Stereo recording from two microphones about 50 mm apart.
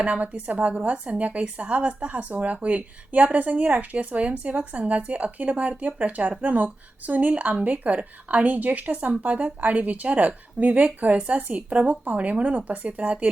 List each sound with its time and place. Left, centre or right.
0.0 s speech: right